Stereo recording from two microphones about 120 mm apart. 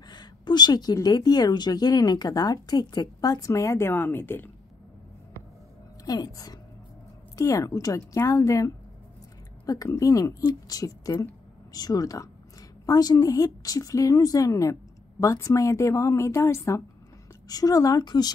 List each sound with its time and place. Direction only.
0.1 s a woman's voice: 35° left (ahead or behind); by 4.5 s 20° left (ahead or behind)
6.0 s a woman's voice: 30° left (ahead or behind)